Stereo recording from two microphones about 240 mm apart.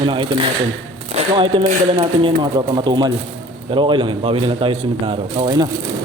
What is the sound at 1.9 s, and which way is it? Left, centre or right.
Speech, centre.